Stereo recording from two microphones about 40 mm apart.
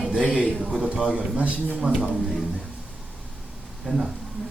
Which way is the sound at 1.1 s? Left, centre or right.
Right.